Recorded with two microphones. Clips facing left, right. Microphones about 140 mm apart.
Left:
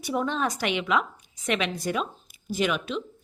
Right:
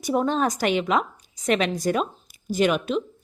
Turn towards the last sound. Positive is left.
turn(degrees=-45)  # may be behind; listen again after turning